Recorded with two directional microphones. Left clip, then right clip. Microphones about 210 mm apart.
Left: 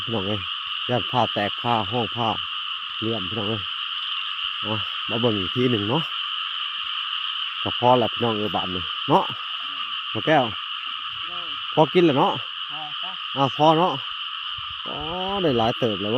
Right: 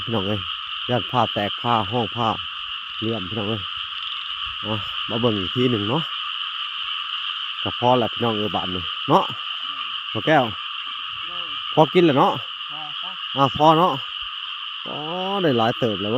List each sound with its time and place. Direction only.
0.1 s frog: 20° right (ahead or behind)
0.9 s owl: 15° right (ahead or behind)
4.7 s owl: 15° right (ahead or behind)
7.6 s owl: 10° right (ahead or behind)
10.2 s owl: 15° right (ahead or behind)
11.7 s owl: 15° right (ahead or behind)
15.2 s owl: 15° right (ahead or behind)